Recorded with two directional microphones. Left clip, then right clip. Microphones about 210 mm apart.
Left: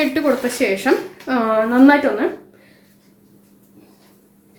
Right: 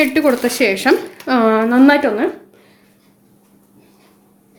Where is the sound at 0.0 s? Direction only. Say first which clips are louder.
Right 3 dB; 35° right (ahead or behind).